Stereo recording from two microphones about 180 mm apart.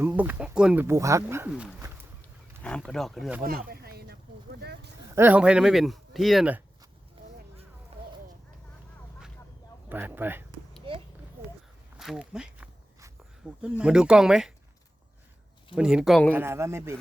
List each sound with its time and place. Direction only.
0.0 s speech: 10° right (ahead or behind)
2.6 s speech: 5° left (ahead or behind)
3.7 s speech: 60° right (ahead or behind)
4.6 s a sound: 65° right (ahead or behind)
5.1 s speech: 10° right (ahead or behind)
9.9 s a man's voice: 10° right (ahead or behind)
11.9 s speech: 5° right (ahead or behind)
15.7 s speech: 5° right (ahead or behind)
16.3 s a man's voice: 15° right (ahead or behind)